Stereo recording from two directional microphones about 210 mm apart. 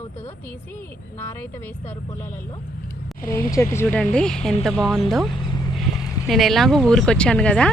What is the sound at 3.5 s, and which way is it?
Speech, 15° left (ahead or behind).